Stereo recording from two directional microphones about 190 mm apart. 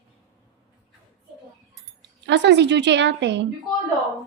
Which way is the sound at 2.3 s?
65° right (ahead or behind).